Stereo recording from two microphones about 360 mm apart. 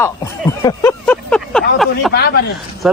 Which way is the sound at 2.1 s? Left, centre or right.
Left.